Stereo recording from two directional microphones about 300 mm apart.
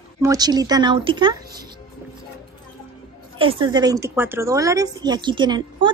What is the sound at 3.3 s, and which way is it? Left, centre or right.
A woman's voice, centre.